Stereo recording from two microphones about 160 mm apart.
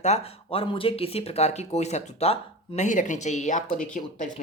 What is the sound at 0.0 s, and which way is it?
Speech, 40° left (ahead or behind).